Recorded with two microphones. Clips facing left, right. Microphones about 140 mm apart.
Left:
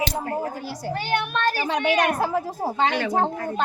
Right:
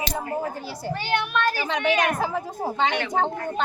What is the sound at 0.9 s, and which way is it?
Speech, 40° left (ahead or behind).